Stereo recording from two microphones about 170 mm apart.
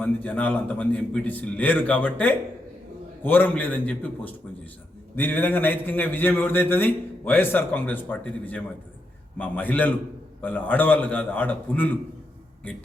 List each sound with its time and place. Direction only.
0.0 s a man's voice: 10° left (ahead or behind)